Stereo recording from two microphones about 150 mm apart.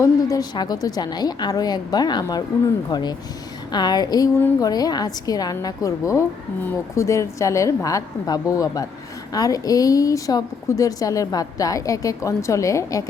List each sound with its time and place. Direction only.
0.0 s a woman's voice: 25° left (ahead or behind)